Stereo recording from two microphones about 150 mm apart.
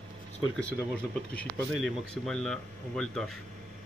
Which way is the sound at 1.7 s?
Centre (ahead or behind).